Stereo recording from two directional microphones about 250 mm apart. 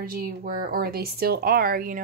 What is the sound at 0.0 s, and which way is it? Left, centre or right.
Speech, right.